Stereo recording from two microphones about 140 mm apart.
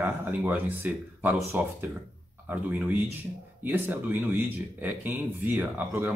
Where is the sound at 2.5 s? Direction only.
15° right (ahead or behind).